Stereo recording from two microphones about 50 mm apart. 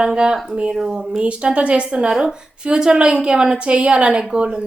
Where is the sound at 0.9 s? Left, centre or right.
Right.